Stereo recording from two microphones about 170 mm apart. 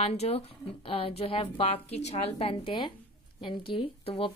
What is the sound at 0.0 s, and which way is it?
Speech, 35° left (ahead or behind).